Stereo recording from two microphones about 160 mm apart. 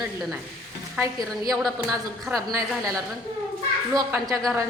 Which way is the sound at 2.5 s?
20° right (ahead or behind).